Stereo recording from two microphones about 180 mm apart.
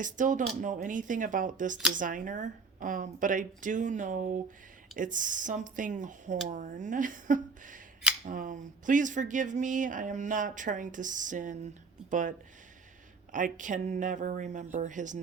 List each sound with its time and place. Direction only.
0.0 s speech: 45° right (ahead or behind)
13.3 s speech: 45° right (ahead or behind)